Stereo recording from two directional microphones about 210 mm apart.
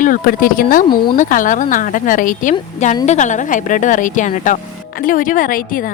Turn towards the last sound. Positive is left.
turn(degrees=40)  # may be behind; listen again after turning